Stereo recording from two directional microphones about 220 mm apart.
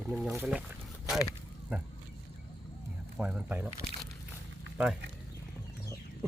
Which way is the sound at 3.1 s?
5° right (ahead or behind).